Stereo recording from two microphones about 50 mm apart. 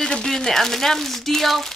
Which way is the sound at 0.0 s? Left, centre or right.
Centre.